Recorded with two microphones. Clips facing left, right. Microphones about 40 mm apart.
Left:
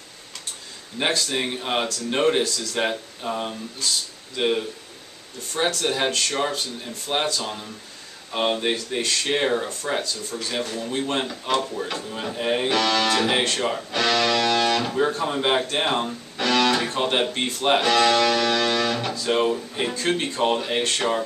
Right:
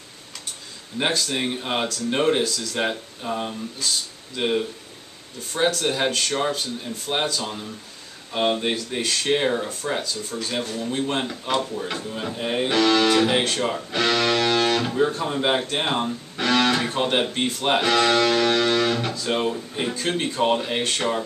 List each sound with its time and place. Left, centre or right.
0.9 s speech: centre
10.3 s music: centre
11.2 s speech: centre
12.6 s speech: centre
13.9 s music: centre
14.8 s speech: centre
15.6 s speech: centre
16.4 s music: centre
16.7 s speech: centre
18.0 s music: centre
18.8 s speech: centre
19.2 s speech: centre
19.7 s speech: centre